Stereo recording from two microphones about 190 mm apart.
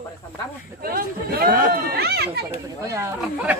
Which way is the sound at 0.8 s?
50° right (ahead or behind).